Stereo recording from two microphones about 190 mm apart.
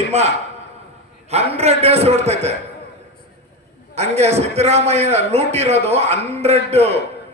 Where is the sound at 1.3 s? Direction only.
35° right (ahead or behind).